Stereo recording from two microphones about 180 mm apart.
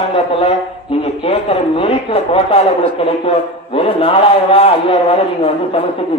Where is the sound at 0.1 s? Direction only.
30° left (ahead or behind).